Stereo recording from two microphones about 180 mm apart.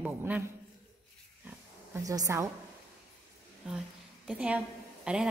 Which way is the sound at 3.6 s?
5° right (ahead or behind).